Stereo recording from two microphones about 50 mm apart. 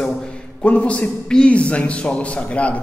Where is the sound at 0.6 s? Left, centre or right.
Left.